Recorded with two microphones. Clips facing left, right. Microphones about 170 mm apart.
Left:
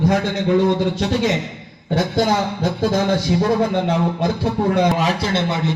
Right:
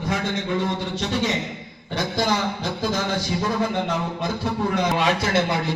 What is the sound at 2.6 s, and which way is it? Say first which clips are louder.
Speech: left 7 dB; 50° left (ahead or behind).